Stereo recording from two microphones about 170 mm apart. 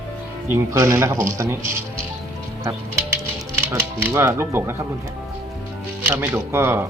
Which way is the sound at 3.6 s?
15° right (ahead or behind).